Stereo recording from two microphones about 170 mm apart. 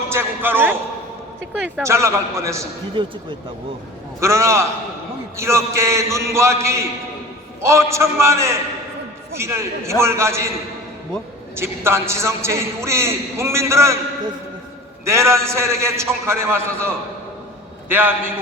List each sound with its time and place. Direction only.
0.1 s a sound: 15° right (ahead or behind)
1.6 s a man's voice: 10° right (ahead or behind)
3.0 s speech: 30° right (ahead or behind)
4.2 s a man's voice: 15° right (ahead or behind)
11.5 s a man's voice: 15° right (ahead or behind)
15.0 s a man's voice: 15° right (ahead or behind)